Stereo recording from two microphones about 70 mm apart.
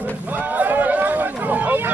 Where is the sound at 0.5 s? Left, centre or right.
Right.